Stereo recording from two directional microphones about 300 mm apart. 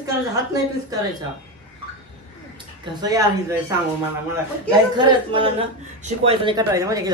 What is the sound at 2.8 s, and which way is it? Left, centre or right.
Speech, centre.